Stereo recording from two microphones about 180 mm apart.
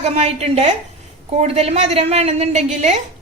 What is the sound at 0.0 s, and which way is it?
A woman's voice, 35° right (ahead or behind).